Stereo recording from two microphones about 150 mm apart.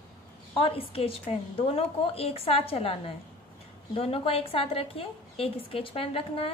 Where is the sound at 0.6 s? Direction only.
40° left (ahead or behind).